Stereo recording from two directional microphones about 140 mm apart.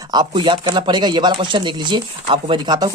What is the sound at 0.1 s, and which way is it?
Speech, 35° right (ahead or behind).